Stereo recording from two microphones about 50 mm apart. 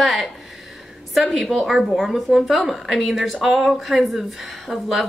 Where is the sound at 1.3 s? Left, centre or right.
Centre.